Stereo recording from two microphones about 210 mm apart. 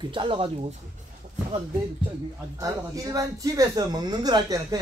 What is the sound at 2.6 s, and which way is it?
A man's voice, 15° right (ahead or behind).